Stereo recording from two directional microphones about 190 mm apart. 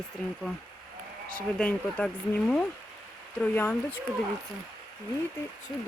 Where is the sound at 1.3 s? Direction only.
5° left (ahead or behind).